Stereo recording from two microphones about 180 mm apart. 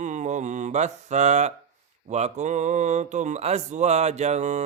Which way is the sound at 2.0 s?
40° right (ahead or behind).